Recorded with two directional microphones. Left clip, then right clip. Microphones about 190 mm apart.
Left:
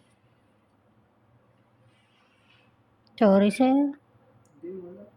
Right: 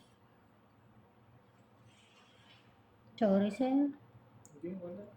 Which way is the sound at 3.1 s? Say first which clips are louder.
Left 11 dB; 70° left (ahead or behind).